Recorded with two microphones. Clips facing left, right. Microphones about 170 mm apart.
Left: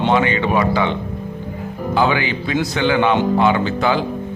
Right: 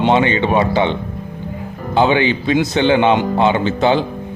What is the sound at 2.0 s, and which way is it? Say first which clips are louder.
Speech: right 4 dB; 25° right (ahead or behind).